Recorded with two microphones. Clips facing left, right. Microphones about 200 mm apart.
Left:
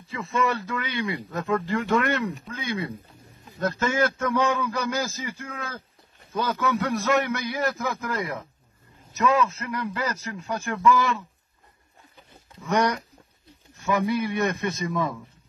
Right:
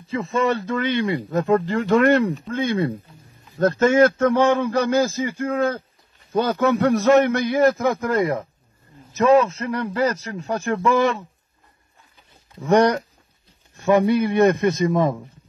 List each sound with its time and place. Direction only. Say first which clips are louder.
0.2 s speech: right 4 dB; 35° right (ahead or behind)
2.4 s speech: right 9 dB; 50° right (ahead or behind)
4.2 s speech: right 7 dB; 30° right (ahead or behind)
5.3 s speech: right 14 dB; 50° right (ahead or behind)
9.2 s speech: right 7 dB; 30° right (ahead or behind)
12.5 s speech: right 8 dB; 30° right (ahead or behind)
14.1 s speech: right 8 dB; 35° right (ahead or behind)